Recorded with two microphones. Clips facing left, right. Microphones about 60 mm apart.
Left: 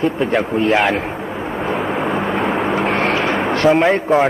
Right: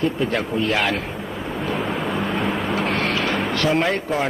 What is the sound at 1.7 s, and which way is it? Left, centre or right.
Vehicle, centre.